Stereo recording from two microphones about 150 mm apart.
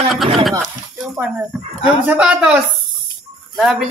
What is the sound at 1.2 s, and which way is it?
A woman's voice, 15° right (ahead or behind).